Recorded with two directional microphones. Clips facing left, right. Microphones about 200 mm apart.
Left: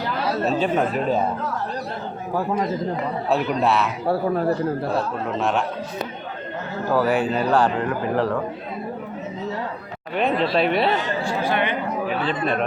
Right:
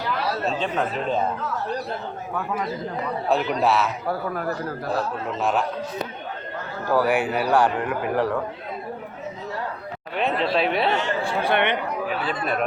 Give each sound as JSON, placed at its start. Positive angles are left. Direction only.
{"t": 0.4, "sound": "speech", "side_deg": 5}
{"t": 2.3, "sound": "speech", "side_deg": 35}
{"t": 3.2, "sound": "a man's voice", "side_deg": 0}
{"t": 4.0, "sound": "a man's voice", "side_deg": 30}
{"t": 4.9, "sound": "a man's voice", "side_deg": 0}
{"t": 7.1, "sound": "speech", "side_deg": -15}
{"t": 10.2, "sound": "a man's voice", "side_deg": 0}
{"t": 11.4, "sound": "speech", "side_deg": -65}
{"t": 12.2, "sound": "speech", "side_deg": -10}